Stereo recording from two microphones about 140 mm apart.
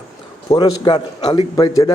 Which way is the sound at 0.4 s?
30° left (ahead or behind).